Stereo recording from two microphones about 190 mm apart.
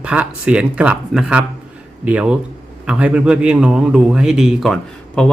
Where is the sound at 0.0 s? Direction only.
5° right (ahead or behind).